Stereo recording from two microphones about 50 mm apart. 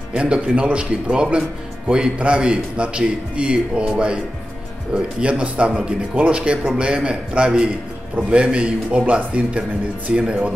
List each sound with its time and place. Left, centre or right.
0.1 s a man's voice: centre